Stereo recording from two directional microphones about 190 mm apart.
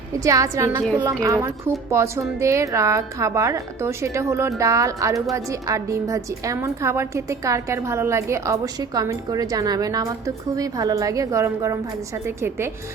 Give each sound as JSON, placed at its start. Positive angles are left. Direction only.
{"t": 0.2, "sound": "a woman's voice", "side_deg": -15}